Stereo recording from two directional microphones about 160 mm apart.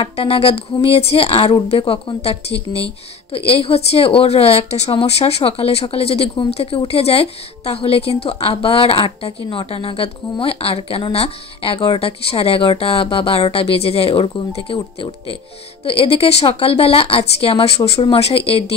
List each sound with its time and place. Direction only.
0.0 s speech: 40° left (ahead or behind)